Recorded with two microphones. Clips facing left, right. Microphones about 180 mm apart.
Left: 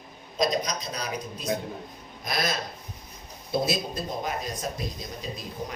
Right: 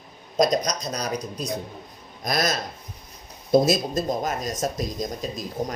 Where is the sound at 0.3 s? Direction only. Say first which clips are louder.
Right 5 dB; 45° right (ahead or behind).